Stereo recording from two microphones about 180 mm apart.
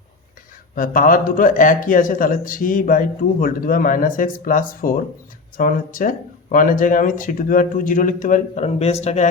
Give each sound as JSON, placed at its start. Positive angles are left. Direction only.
{"t": 0.8, "sound": "a man's voice", "side_deg": 50}